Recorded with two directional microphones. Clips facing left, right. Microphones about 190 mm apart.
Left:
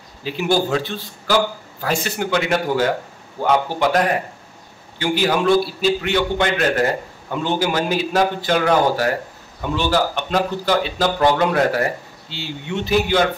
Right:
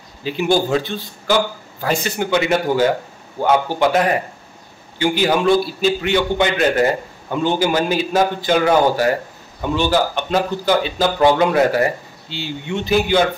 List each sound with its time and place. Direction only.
0.2 s a man's voice: 5° left (ahead or behind)